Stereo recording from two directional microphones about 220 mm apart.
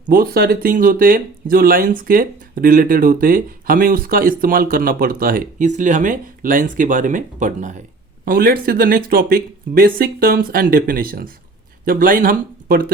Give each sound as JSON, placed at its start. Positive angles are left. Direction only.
{"t": 0.1, "sound": "speech", "side_deg": -40}